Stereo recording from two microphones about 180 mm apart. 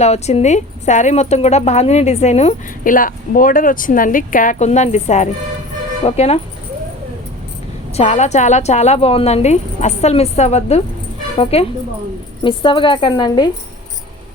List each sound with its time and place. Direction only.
0.0 s speech: 35° left (ahead or behind)
7.9 s a woman's voice: 40° left (ahead or behind); by 13.5 s 25° left (ahead or behind)